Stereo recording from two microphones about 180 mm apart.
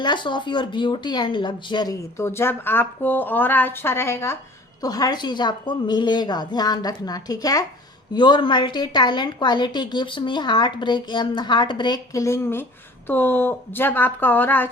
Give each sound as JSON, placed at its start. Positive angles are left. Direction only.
{"t": 0.0, "sound": "a woman's voice", "side_deg": 25}